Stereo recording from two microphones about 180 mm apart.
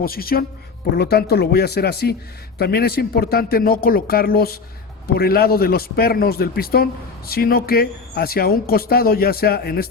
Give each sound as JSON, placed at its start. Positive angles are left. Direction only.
{"t": 0.0, "sound": "speech", "side_deg": 55}